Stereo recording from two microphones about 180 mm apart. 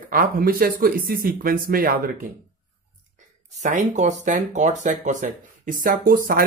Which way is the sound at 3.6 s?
40° right (ahead or behind).